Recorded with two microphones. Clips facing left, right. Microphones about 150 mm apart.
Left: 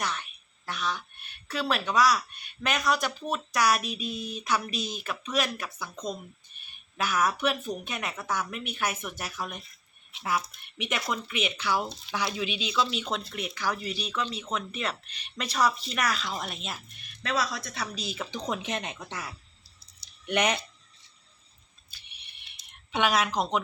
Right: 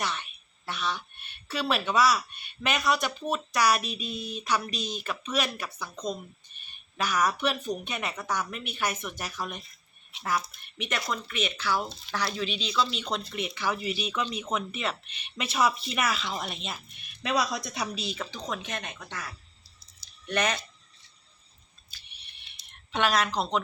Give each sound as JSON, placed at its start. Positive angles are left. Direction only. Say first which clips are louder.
{"t": 0.0, "sound": "a sound", "louder": "even", "side_deg": 0}
{"t": 1.5, "sound": "speech", "louder": "right 1 dB", "side_deg": 0}
{"t": 17.2, "sound": "speech", "louder": "right 2 dB", "side_deg": -15}
{"t": 18.0, "sound": "speech", "louder": "right 1 dB", "side_deg": 5}
{"t": 18.3, "sound": "speech", "louder": "left 3 dB", "side_deg": 20}
{"t": 20.2, "sound": "speech", "louder": "left 2 dB", "side_deg": 15}
{"t": 22.9, "sound": "speech", "louder": "even", "side_deg": 10}